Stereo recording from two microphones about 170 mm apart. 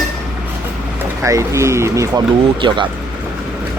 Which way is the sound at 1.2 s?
15° right (ahead or behind).